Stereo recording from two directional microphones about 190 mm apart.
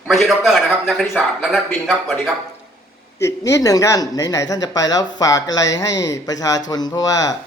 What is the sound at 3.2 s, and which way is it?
Speech, 15° left (ahead or behind).